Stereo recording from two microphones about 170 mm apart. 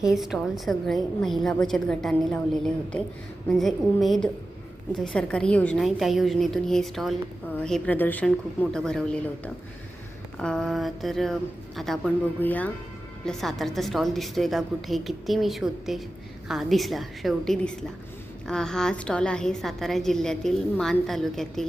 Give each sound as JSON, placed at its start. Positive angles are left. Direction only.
{"t": 0.0, "sound": "a woman's voice", "side_deg": 0}